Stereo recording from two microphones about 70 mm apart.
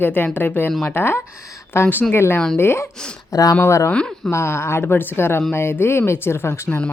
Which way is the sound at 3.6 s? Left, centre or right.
Left.